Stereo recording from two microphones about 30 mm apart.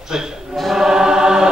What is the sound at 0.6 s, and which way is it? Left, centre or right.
Choir, centre.